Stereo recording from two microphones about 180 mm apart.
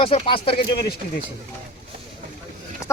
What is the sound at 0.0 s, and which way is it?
Speech, 30° left (ahead or behind).